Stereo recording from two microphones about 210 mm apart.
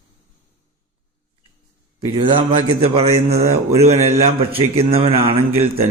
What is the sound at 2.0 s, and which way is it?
A man's voice, 20° right (ahead or behind).